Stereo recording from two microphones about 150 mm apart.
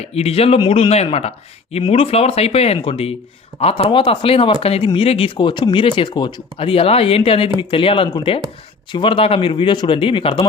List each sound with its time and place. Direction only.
0.0 s speech: 45° left (ahead or behind)